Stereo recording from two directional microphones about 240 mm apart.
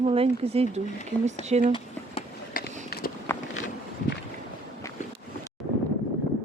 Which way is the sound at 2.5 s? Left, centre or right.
Left.